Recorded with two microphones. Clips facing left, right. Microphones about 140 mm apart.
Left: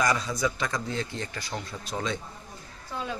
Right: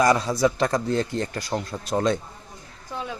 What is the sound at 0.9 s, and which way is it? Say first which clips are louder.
Speech: right 8 dB; 50° right (ahead or behind).